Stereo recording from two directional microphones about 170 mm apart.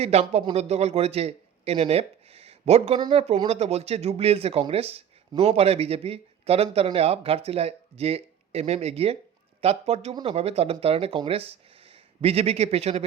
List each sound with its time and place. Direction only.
0.0 s a man's voice: 40° right (ahead or behind)